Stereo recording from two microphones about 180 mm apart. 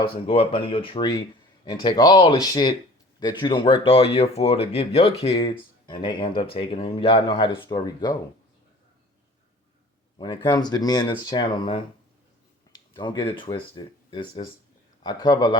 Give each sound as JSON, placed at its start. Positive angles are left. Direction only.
{"t": 0.0, "sound": "speech", "side_deg": 30}
{"t": 10.2, "sound": "speech", "side_deg": 25}